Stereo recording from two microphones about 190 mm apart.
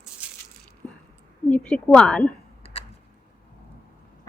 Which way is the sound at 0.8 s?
5° left (ahead or behind).